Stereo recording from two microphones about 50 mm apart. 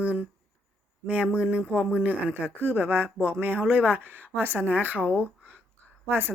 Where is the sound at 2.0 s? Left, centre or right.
Right.